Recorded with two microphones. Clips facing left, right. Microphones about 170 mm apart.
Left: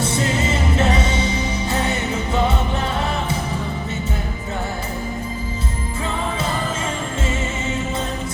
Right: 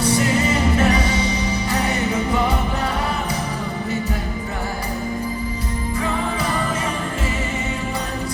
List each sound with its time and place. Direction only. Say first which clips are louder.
0.8 s music: right 1 dB; 25° left (ahead or behind)